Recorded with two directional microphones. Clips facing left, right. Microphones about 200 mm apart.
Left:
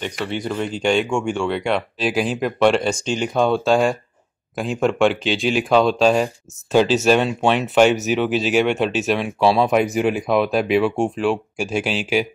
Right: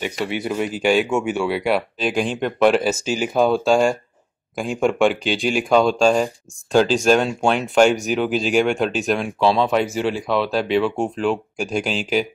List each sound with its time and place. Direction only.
0.0 s speech: 10° right (ahead or behind); by 12.3 s 5° left (ahead or behind)